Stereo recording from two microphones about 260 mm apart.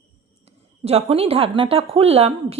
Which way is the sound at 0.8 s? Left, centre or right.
Right.